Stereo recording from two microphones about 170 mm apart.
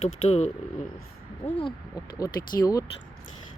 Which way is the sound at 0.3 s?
40° left (ahead or behind).